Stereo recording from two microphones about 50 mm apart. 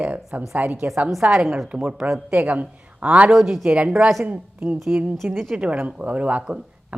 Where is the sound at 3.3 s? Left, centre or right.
Centre.